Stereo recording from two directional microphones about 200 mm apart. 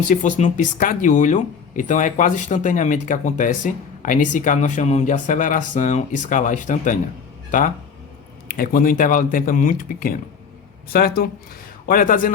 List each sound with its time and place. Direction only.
0.1 s speech: 40° left (ahead or behind)
8.4 s speech: 45° left (ahead or behind)